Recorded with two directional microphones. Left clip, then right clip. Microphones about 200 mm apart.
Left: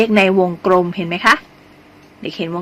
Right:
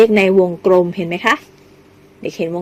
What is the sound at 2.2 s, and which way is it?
Speech, 15° right (ahead or behind).